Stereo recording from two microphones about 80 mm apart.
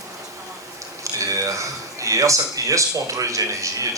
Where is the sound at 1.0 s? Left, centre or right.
Right.